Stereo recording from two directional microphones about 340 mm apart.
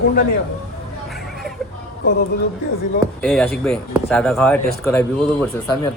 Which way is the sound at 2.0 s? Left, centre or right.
Left.